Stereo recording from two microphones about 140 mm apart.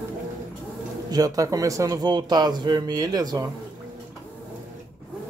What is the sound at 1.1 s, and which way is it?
A man's voice, 25° right (ahead or behind).